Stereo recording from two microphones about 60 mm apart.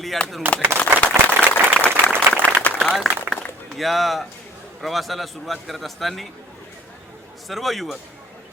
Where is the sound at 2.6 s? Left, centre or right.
Centre.